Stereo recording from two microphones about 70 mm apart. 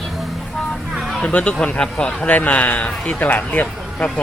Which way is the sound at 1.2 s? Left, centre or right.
Centre.